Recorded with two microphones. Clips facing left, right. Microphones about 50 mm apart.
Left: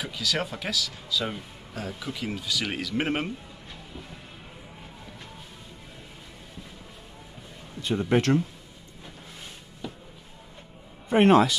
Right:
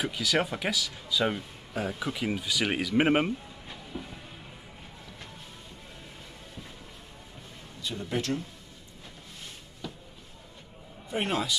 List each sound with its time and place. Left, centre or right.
0.0 s speech: centre
7.8 s speech: left
9.8 s a sound: centre
11.1 s speech: left